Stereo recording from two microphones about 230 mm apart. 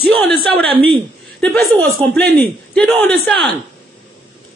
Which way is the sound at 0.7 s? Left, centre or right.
Right.